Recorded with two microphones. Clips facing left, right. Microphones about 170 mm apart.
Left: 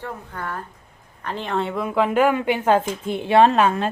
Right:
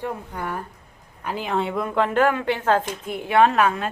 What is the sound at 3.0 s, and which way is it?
Speech, 25° left (ahead or behind).